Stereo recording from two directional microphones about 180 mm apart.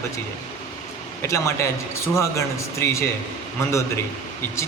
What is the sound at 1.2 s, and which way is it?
A man's voice, 15° left (ahead or behind).